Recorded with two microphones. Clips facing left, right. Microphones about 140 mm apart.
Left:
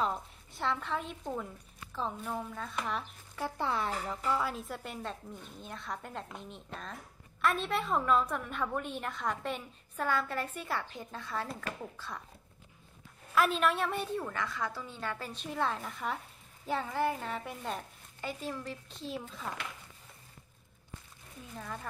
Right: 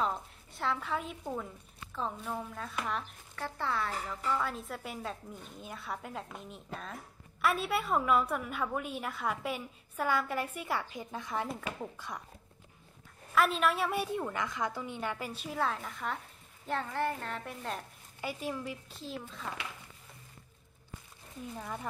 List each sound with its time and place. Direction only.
0.0 s a woman's voice: centre (ahead or behind)
3.3 s speech: 15° left (ahead or behind)
4.4 s a woman's voice: centre (ahead or behind); by 12.2 s 15° right (ahead or behind)
13.3 s a woman's voice: centre (ahead or behind)
18.2 s a woman's voice: 15° right (ahead or behind)
18.9 s a woman's voice: centre (ahead or behind)
21.5 s a woman's voice: 10° right (ahead or behind)